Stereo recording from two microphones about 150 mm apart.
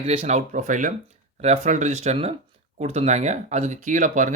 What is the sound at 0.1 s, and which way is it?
Speech, 40° right (ahead or behind).